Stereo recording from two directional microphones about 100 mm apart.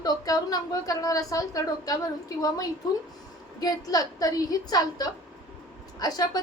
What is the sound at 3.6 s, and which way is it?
A woman's voice, 40° left (ahead or behind).